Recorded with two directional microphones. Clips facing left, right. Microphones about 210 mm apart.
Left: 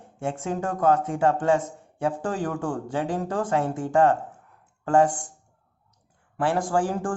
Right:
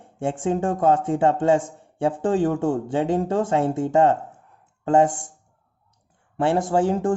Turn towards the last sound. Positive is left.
turn(degrees=-25)  # may be behind; listen again after turning